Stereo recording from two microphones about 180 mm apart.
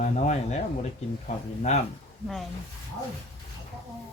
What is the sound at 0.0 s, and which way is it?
Speech, 40° left (ahead or behind).